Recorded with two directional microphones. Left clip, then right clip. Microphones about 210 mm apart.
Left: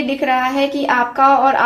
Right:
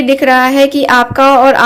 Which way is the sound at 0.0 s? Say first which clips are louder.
Right 8 dB; 45° right (ahead or behind).